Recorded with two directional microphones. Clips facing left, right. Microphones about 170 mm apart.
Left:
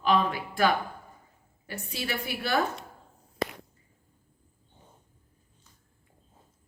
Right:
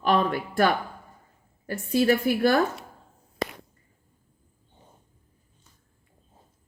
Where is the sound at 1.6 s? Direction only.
45° right (ahead or behind).